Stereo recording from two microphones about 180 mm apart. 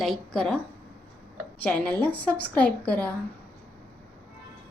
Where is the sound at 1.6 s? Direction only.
5° left (ahead or behind).